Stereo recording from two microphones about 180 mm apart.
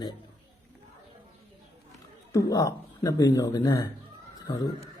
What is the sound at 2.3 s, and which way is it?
Speech, 20° left (ahead or behind).